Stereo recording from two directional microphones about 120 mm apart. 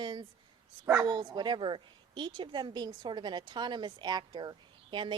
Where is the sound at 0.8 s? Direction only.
20° right (ahead or behind).